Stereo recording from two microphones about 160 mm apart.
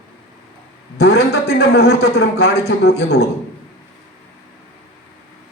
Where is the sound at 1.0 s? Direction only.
90° left.